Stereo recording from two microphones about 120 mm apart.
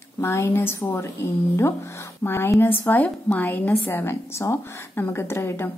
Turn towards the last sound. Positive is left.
turn(degrees=20)  # may be behind; listen again after turning